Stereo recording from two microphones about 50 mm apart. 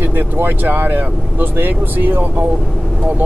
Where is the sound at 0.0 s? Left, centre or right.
Right.